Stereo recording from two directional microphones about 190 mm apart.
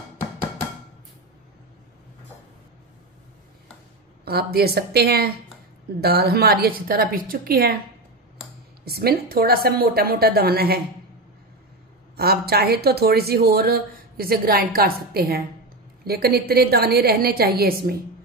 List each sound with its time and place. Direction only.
4.2 s a woman's voice: 55° right (ahead or behind)
8.8 s speech: 55° right (ahead or behind)
12.2 s a woman's voice: 55° right (ahead or behind)